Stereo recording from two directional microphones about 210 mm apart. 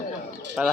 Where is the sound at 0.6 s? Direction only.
5° right (ahead or behind).